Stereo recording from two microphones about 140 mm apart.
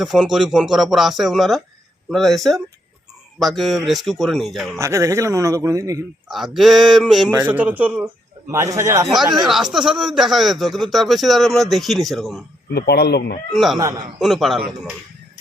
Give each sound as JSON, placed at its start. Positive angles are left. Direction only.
{"t": 0.0, "sound": "a man's voice", "side_deg": 0}
{"t": 4.8, "sound": "a man's voice", "side_deg": -20}
{"t": 6.2, "sound": "a man's voice", "side_deg": 0}
{"t": 7.4, "sound": "a man's voice", "side_deg": -10}
{"t": 8.4, "sound": "a man's voice", "side_deg": -20}
{"t": 9.0, "sound": "a man's voice", "side_deg": 0}
{"t": 13.5, "sound": "a man's voice", "side_deg": 0}